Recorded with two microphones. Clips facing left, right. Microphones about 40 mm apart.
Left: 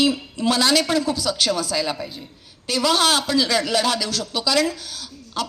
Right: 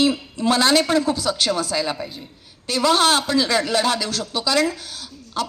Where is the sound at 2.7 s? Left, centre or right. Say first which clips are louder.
Right 2 dB; right.